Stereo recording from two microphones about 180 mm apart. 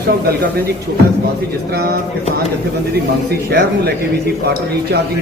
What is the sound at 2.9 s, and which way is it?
A man's voice, 65° right (ahead or behind).